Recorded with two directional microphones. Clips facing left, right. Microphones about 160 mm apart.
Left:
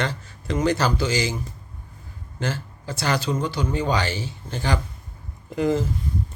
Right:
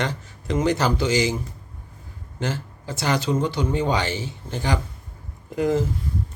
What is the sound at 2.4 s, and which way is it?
Speech, 20° right (ahead or behind).